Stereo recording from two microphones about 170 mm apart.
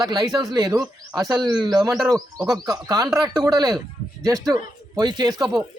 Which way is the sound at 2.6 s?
20° right (ahead or behind).